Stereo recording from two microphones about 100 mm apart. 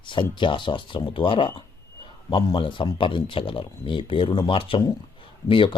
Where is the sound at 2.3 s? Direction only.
50° left (ahead or behind).